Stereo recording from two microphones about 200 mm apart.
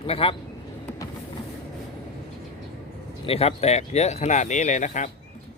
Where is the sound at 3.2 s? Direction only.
30° left (ahead or behind).